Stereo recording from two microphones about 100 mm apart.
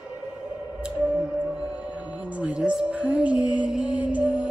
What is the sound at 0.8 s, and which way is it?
Music, 10° right (ahead or behind).